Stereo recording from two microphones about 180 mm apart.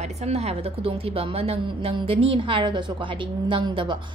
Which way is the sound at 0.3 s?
35° right (ahead or behind).